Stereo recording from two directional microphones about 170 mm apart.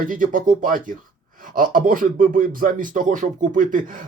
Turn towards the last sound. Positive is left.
turn(degrees=-50)  # may be behind; listen again after turning